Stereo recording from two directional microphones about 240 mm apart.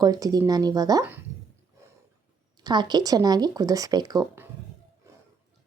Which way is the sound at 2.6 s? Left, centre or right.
Centre.